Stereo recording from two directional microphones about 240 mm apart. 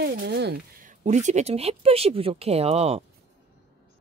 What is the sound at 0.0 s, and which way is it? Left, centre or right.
Speech, right.